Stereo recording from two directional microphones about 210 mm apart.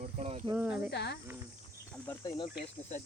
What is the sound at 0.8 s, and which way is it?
Cricket, 55° left (ahead or behind).